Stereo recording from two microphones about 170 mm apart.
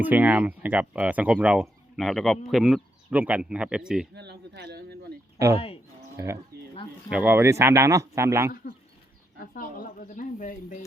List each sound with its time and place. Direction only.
0.0 s speech: 10° right (ahead or behind)
4.1 s speech: 80° right
6.1 s speech: 15° right (ahead or behind)
9.6 s speech: 55° left (ahead or behind)